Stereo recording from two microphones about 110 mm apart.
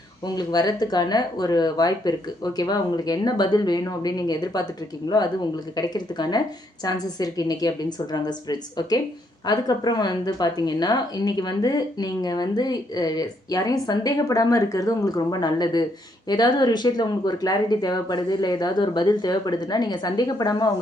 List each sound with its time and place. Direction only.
0.3 s speech: 40° left (ahead or behind)